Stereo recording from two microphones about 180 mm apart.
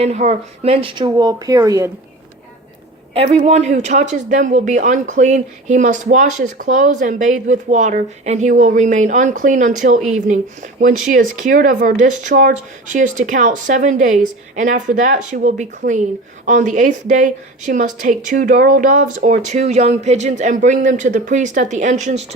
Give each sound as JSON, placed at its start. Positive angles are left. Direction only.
{"t": 0.0, "sound": "speech", "side_deg": -40}
{"t": 3.2, "sound": "speech", "side_deg": -35}